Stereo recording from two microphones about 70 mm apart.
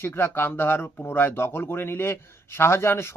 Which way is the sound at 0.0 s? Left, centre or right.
Left.